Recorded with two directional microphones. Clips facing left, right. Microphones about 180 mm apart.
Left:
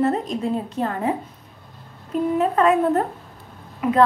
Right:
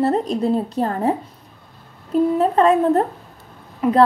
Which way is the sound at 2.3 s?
30° right (ahead or behind).